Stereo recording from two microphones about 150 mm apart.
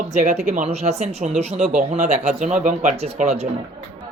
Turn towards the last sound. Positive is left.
turn(degrees=-45)  # may be behind; listen again after turning